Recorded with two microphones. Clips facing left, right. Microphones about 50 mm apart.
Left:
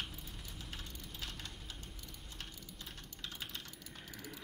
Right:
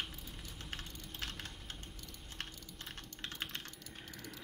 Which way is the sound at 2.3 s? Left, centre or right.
Right.